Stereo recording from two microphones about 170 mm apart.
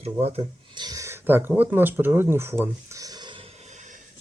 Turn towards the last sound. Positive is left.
turn(degrees=-25)  # may be behind; listen again after turning